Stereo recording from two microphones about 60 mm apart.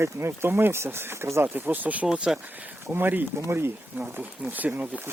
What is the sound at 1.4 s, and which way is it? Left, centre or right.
Speech, right.